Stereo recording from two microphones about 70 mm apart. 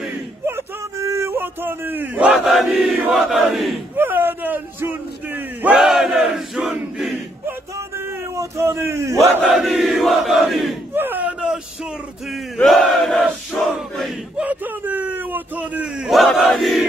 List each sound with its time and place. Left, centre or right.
0.5 s a sound: right
2.3 s crowd: centre
3.9 s a sound: right
5.7 s battle cry: centre
8.4 s speech: right
9.4 s crowd: centre
10.9 s battle cry: right
12.6 s crowd: centre
14.3 s a sound: right
16.1 s crowd: centre